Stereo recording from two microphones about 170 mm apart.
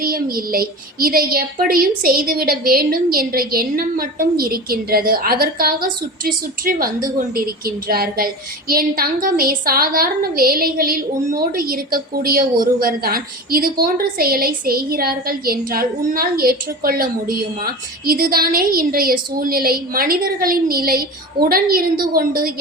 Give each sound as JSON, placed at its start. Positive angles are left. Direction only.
{"t": 0.0, "sound": "a child's voice", "side_deg": -60}